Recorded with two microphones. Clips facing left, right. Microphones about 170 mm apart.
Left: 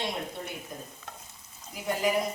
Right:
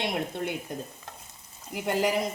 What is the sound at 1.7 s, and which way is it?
Speech, 75° right (ahead or behind).